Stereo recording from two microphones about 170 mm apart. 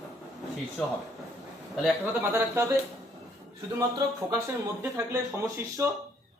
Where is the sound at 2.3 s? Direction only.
15° right (ahead or behind).